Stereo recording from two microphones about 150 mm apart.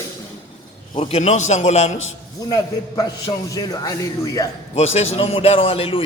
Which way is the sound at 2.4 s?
25° left (ahead or behind).